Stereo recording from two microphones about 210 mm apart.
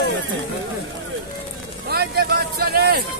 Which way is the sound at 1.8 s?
50° right (ahead or behind).